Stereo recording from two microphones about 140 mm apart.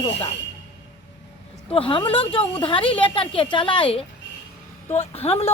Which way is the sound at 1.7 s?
40° left (ahead or behind).